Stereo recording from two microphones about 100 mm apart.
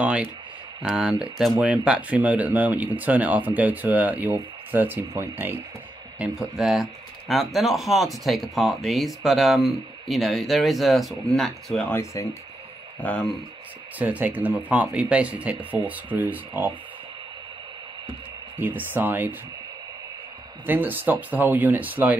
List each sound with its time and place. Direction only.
0.0 s speech: 15° right (ahead or behind)
6.1 s speech: 10° right (ahead or behind); by 11.8 s 5° left (ahead or behind)
11.9 s speech: 30° left (ahead or behind)
13.0 s speech: 10° left (ahead or behind)
13.9 s speech: 15° right (ahead or behind)
18.6 s speech: 20° right (ahead or behind)
20.6 s speech: 20° right (ahead or behind)